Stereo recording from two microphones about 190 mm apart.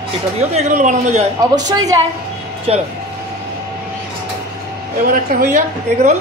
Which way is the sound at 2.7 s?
35° right (ahead or behind).